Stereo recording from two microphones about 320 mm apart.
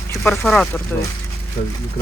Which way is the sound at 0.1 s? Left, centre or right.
Centre.